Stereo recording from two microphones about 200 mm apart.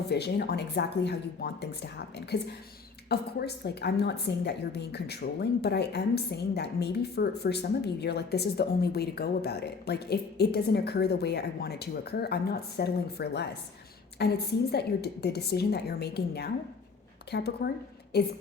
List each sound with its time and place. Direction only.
0.1 s a woman's voice: 55° left (ahead or behind)